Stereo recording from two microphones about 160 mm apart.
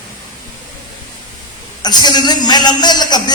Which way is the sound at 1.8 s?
25° left (ahead or behind).